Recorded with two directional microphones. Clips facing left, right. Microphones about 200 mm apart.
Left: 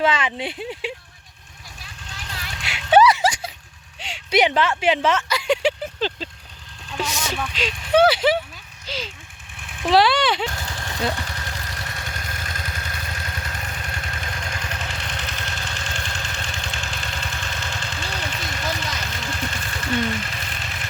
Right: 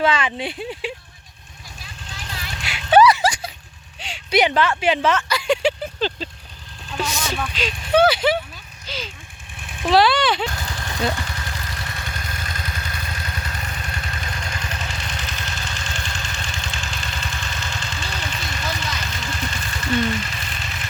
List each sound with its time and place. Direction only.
0.0 s speech: 20° left (ahead or behind)
2.6 s a sound: 25° left (ahead or behind)
4.8 s vehicle: 25° left (ahead or behind)
7.1 s a sound: 10° left (ahead or behind)
7.9 s speech: 30° left (ahead or behind)
9.8 s speech: 25° left (ahead or behind)
11.1 s vehicle: 35° left (ahead or behind)